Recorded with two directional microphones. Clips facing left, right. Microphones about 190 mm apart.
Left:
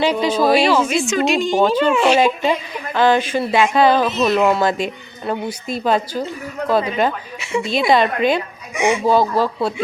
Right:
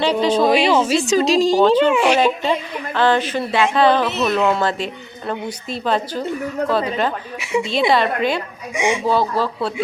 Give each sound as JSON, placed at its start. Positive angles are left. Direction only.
{"t": 0.0, "sound": "a woman's voice", "side_deg": 10}
{"t": 0.8, "sound": "a woman's voice", "side_deg": -35}
{"t": 1.8, "sound": "speech", "side_deg": -15}
{"t": 2.1, "sound": "a woman's voice", "side_deg": 15}
{"t": 7.3, "sound": "speech", "side_deg": -15}
{"t": 7.9, "sound": "a woman's voice", "side_deg": 15}
{"t": 8.7, "sound": "speech", "side_deg": -15}
{"t": 9.0, "sound": "a woman's voice", "side_deg": 15}